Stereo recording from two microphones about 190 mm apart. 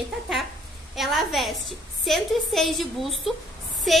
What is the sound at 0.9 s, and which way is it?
A woman's voice, centre (ahead or behind).